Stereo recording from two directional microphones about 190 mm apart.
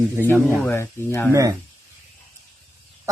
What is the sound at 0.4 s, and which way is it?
Speech, 10° left (ahead or behind).